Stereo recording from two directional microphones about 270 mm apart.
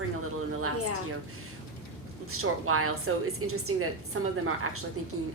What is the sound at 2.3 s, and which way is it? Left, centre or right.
A woman's voice, right.